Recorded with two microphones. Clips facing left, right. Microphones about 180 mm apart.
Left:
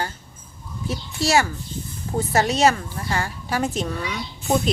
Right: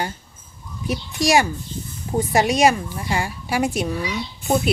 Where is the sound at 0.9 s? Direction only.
15° right (ahead or behind).